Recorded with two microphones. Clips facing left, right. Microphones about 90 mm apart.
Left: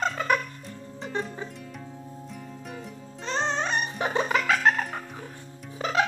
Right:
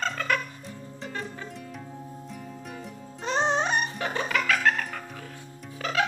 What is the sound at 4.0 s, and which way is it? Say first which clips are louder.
Music: left 3 dB; 20° left (ahead or behind).